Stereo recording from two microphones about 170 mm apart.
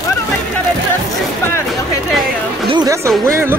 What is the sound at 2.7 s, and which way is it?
Speech, 20° right (ahead or behind).